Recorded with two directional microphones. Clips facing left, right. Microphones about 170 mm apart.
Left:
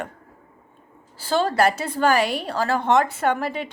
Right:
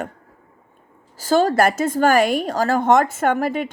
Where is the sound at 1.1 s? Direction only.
45° right (ahead or behind).